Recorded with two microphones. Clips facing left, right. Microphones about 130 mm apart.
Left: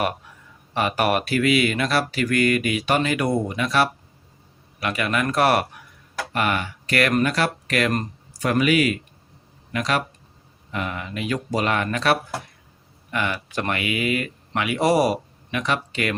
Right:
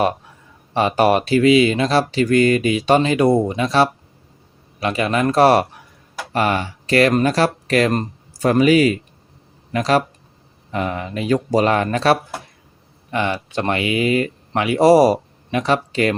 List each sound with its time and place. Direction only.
0.7 s speech: 30° right (ahead or behind)